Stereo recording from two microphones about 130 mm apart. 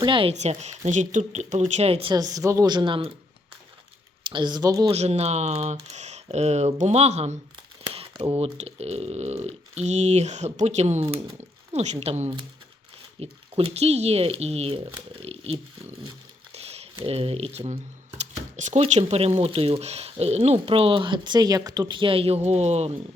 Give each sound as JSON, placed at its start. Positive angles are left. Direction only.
{"t": 0.0, "sound": "speech", "side_deg": -40}
{"t": 0.3, "sound": "speech", "side_deg": -60}
{"t": 2.1, "sound": "a woman's voice", "side_deg": -25}
{"t": 2.7, "sound": "speech", "side_deg": -40}
{"t": 4.3, "sound": "speech", "side_deg": -35}
{"t": 4.9, "sound": "speech", "side_deg": -55}
{"t": 13.1, "sound": "speech", "side_deg": -45}
{"t": 16.5, "sound": "a sound", "side_deg": -55}
{"t": 16.9, "sound": "speech", "side_deg": -45}
{"t": 18.2, "sound": "a sound", "side_deg": -65}
{"t": 18.8, "sound": "speech", "side_deg": -50}